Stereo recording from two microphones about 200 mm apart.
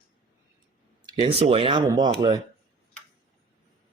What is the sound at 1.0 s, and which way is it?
Speech, 25° right (ahead or behind).